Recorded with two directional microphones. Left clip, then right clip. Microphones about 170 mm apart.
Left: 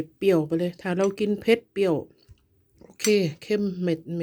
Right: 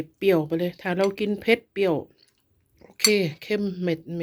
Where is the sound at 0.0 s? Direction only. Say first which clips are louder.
Even; 20° left (ahead or behind).